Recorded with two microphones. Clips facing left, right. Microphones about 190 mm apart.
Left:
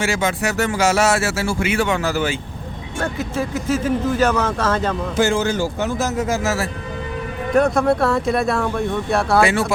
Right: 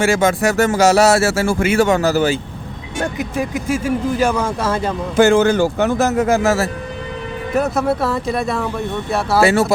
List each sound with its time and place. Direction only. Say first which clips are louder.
0.0 s speech: right 6 dB; 50° right (ahead or behind)
3.0 s speech: right 2 dB; 15° right (ahead or behind)
5.1 s speech: right 8 dB; 60° right (ahead or behind)
7.5 s speech: left 2 dB; 5° right (ahead or behind)
9.4 s speech: right 4 dB; 40° right (ahead or behind)